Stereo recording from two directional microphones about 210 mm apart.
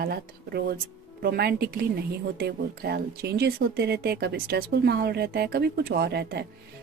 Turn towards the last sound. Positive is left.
turn(degrees=-50)  # may be behind; listen again after turning